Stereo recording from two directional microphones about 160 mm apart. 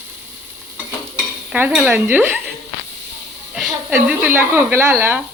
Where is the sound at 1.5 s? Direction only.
10° right (ahead or behind).